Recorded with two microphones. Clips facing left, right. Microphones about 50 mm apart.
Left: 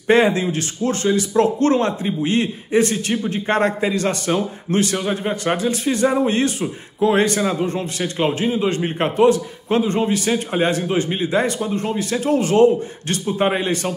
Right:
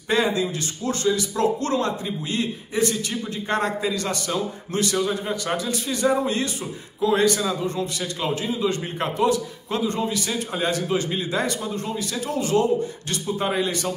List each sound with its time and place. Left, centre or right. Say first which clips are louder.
0.1 s speech: left 6 dB; left